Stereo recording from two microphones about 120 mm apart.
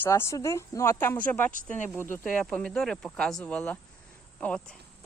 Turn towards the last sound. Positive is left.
turn(degrees=10)  # may be behind; listen again after turning